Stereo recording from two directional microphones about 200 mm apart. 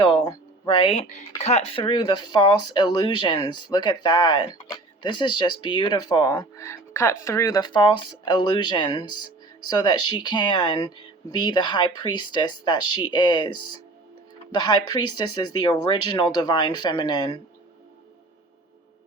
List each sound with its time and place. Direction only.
0.0 s speech: 20° left (ahead or behind)